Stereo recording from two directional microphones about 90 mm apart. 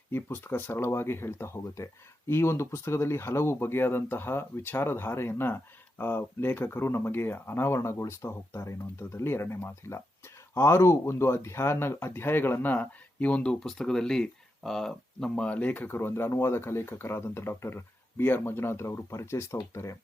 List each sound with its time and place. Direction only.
0.1 s speech: 25° left (ahead or behind)